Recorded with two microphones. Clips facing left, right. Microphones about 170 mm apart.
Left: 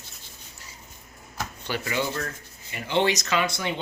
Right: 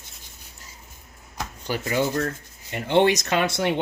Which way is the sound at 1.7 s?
40° right (ahead or behind).